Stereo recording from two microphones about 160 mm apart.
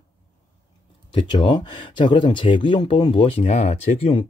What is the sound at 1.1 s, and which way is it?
Speech, 30° left (ahead or behind).